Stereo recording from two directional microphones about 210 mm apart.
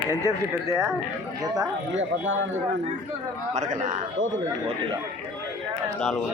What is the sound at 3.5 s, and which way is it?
Speech, 35° right (ahead or behind).